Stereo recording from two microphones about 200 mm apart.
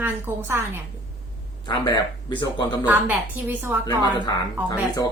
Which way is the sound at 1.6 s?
20° left (ahead or behind).